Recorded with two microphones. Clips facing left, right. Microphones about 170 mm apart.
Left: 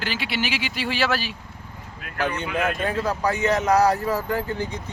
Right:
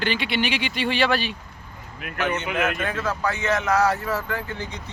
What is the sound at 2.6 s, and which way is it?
Speech, 30° left (ahead or behind).